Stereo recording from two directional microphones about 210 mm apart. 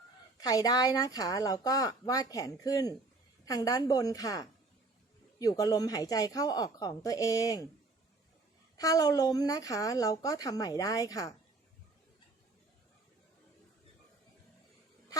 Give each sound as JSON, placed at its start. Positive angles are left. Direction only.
{"t": 0.3, "sound": "speech", "side_deg": 15}
{"t": 8.8, "sound": "speech", "side_deg": 15}